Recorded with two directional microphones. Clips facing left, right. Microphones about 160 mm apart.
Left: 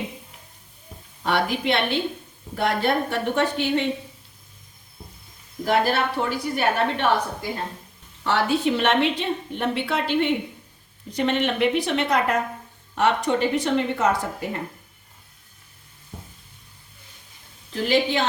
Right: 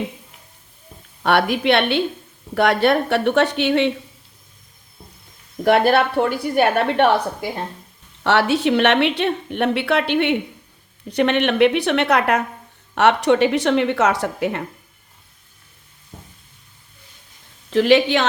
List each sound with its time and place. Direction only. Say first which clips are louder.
1.2 s a woman's voice: right 5 dB; 65° right (ahead or behind)
5.6 s a woman's voice: right 6 dB; 65° right (ahead or behind)
8.2 s a woman's voice: right 4 dB; 75° right (ahead or behind)
17.7 s a woman's voice: right 7 dB; 75° right (ahead or behind)